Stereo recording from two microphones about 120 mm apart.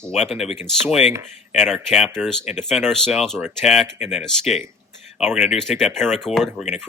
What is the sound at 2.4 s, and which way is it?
Speech, 70° left (ahead or behind).